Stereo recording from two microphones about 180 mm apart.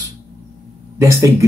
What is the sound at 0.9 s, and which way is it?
Speech, 15° right (ahead or behind).